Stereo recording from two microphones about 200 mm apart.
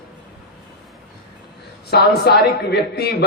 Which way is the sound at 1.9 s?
55° left (ahead or behind).